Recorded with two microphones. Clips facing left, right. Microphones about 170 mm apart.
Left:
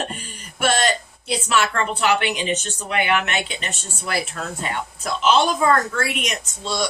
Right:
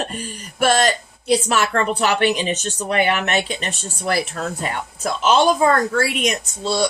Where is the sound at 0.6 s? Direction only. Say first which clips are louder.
Right 4 dB; 45° right (ahead or behind).